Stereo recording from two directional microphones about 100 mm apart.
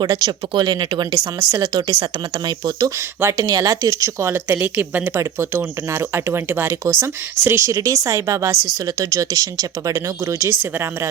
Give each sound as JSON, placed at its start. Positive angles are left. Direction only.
{"t": 0.0, "sound": "speech", "side_deg": -45}
{"t": 1.1, "sound": "speech", "side_deg": -30}
{"t": 1.6, "sound": "speech", "side_deg": -45}
{"t": 3.2, "sound": "speech", "side_deg": -30}